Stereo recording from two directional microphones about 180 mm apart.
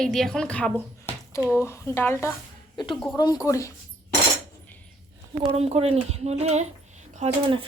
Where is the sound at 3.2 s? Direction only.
20° left (ahead or behind).